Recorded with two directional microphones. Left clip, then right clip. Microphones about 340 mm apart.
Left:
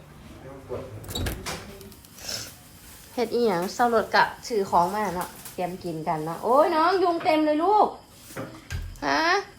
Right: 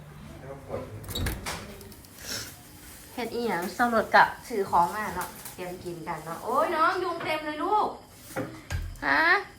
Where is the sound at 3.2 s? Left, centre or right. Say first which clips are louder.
Left 6 dB; centre.